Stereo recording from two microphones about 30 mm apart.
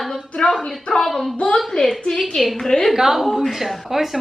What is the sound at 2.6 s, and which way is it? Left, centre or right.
Speech, left.